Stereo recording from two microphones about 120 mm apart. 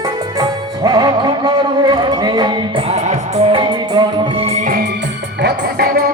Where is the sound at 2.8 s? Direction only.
70° right (ahead or behind).